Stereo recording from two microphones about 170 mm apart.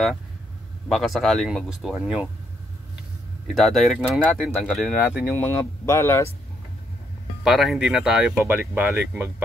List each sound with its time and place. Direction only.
0.8 s speech: centre (ahead or behind)
3.5 s speech: centre (ahead or behind)
5.3 s speech: 15° left (ahead or behind)
7.4 s speech: centre (ahead or behind)